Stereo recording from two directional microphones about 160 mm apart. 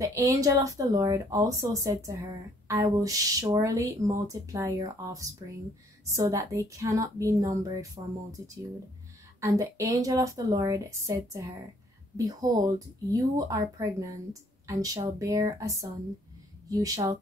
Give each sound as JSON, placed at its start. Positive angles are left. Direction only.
{"t": 0.0, "sound": "speech", "side_deg": -20}
{"t": 9.4, "sound": "speech", "side_deg": -20}